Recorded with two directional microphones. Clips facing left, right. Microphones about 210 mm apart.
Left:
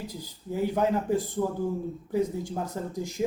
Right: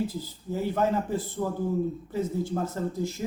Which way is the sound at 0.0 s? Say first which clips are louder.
Right 8 dB; 15° left (ahead or behind).